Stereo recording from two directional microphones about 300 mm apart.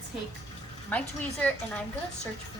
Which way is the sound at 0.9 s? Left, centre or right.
Centre.